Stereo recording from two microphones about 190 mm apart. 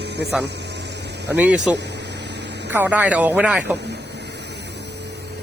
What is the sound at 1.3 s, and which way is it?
Speech, 10° right (ahead or behind).